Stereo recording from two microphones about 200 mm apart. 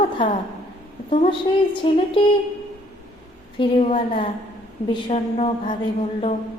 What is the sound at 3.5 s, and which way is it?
Speech, 25° left (ahead or behind).